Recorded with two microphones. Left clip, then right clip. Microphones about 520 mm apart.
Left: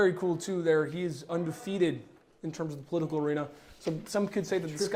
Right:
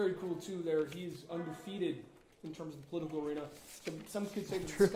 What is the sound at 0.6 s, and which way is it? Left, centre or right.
Speech, left.